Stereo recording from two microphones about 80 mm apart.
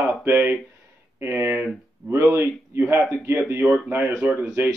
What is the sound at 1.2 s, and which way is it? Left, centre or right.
A man's voice, right.